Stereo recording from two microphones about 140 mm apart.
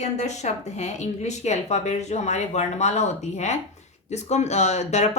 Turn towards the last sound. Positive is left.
turn(degrees=55)  # may be behind; listen again after turning